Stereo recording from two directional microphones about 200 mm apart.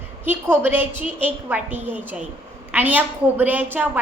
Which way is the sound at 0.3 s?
10° right (ahead or behind).